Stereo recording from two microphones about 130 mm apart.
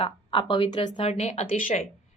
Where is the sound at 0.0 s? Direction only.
40° left (ahead or behind).